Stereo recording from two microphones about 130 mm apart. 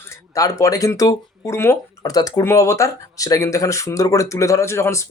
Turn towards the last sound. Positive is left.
turn(degrees=20)  # may be behind; listen again after turning